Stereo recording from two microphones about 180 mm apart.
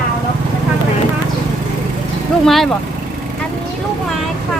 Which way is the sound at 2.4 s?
Centre (ahead or behind).